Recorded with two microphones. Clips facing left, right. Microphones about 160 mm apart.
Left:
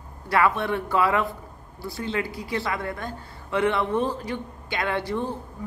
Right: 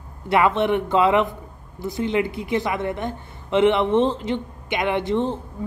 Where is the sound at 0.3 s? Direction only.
20° right (ahead or behind).